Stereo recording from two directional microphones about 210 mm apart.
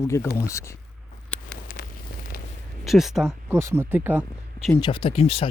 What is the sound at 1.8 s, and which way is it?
Fire, 50° left (ahead or behind).